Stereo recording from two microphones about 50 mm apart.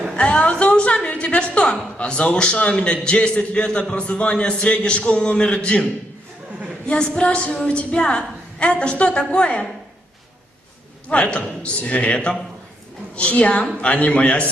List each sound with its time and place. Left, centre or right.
0.2 s a woman's voice: left
11.1 s a woman's voice: left